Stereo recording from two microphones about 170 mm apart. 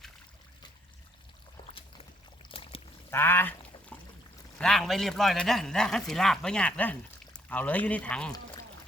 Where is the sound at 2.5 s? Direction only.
35° left (ahead or behind).